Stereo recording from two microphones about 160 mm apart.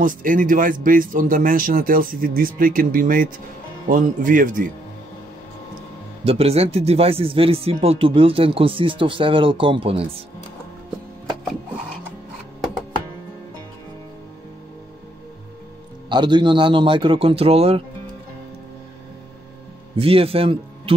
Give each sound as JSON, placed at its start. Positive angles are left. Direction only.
{"t": 0.0, "sound": "a man's voice", "side_deg": -60}
{"t": 6.2, "sound": "speech", "side_deg": -40}
{"t": 16.1, "sound": "speech", "side_deg": -30}
{"t": 20.0, "sound": "a man's voice", "side_deg": -35}